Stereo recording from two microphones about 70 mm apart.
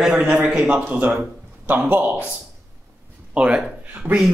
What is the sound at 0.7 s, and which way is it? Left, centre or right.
A man's voice, right.